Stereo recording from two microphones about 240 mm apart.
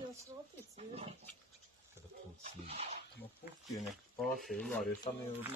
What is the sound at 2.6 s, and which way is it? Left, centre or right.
Speech, right.